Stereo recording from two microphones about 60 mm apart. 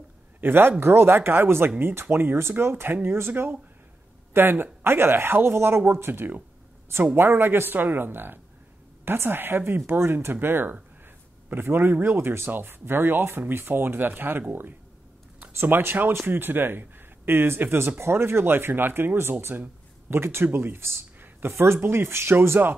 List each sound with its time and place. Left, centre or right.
0.4 s speech: right
15.4 s speech: right